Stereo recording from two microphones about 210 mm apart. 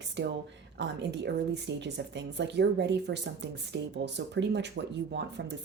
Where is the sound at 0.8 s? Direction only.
55° right (ahead or behind).